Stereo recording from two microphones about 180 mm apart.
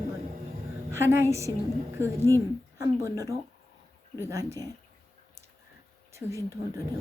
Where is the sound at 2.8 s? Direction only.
15° right (ahead or behind).